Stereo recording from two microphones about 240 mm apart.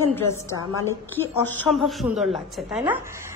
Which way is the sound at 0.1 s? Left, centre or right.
Centre.